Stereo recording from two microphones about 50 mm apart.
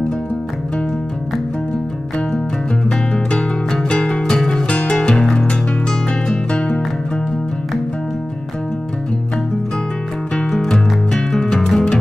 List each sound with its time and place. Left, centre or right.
3.3 s music: centre
4.6 s music: left
10.3 s music: centre